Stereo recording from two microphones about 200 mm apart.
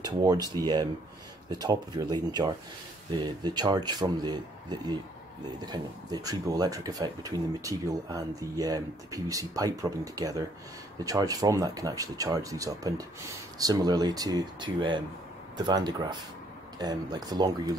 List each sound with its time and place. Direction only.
0.0 s a man's voice: 20° right (ahead or behind)